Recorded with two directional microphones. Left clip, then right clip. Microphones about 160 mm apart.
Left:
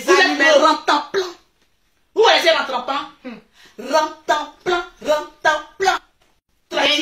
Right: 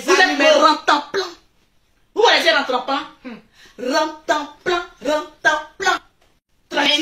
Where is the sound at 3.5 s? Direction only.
20° right (ahead or behind).